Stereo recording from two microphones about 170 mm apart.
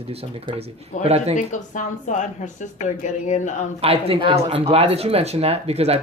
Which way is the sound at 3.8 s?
35° right (ahead or behind).